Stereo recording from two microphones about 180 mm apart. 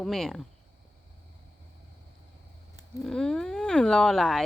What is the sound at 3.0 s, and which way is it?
Speech, 5° left (ahead or behind).